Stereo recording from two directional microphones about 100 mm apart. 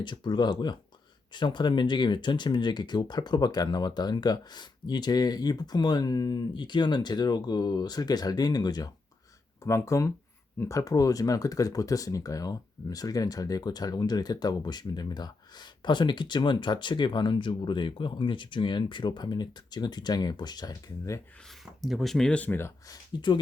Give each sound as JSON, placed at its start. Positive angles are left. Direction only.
{"t": 0.0, "sound": "speech", "side_deg": 50}
{"t": 9.6, "sound": "speech", "side_deg": 30}
{"t": 21.8, "sound": "speech", "side_deg": 0}
{"t": 22.9, "sound": "speech", "side_deg": 50}